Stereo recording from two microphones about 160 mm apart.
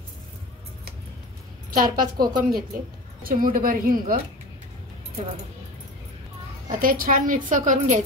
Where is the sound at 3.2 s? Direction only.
60° right (ahead or behind).